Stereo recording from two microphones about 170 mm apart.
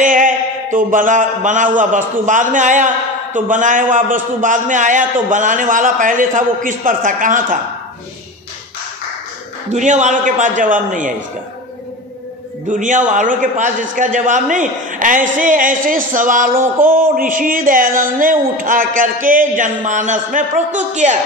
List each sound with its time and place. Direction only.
0.0 s a man's voice: 50° right (ahead or behind)
9.7 s speech: 45° right (ahead or behind)
12.6 s speech: 50° right (ahead or behind)